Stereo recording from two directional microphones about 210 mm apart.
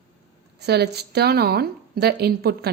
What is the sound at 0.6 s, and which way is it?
A woman's voice, 50° right (ahead or behind).